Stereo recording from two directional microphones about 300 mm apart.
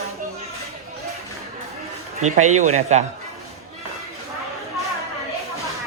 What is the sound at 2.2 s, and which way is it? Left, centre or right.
Speech, right.